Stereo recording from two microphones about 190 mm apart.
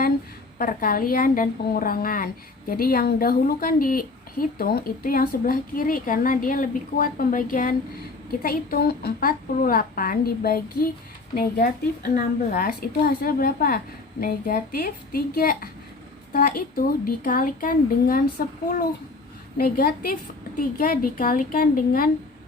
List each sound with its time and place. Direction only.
0.6 s a woman's voice: 50° left (ahead or behind)
19.5 s a woman's voice: 50° left (ahead or behind)